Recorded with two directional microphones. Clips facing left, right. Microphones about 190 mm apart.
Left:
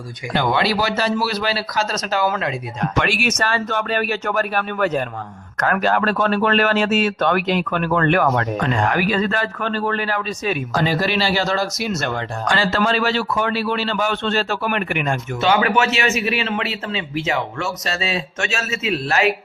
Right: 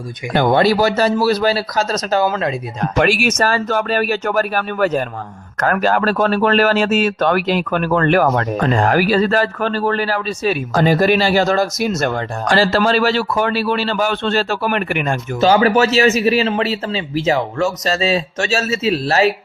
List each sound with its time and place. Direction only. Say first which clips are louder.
0.3 s speech: right 6 dB; 45° right (ahead or behind)
10.8 s speech: right 7 dB; 50° right (ahead or behind)